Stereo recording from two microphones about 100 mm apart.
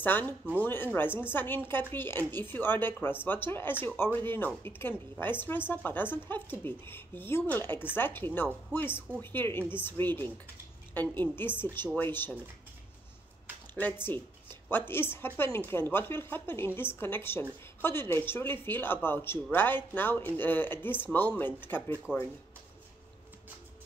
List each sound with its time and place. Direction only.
0.0 s a woman's voice: 20° left (ahead or behind)
13.7 s a woman's voice: 20° left (ahead or behind)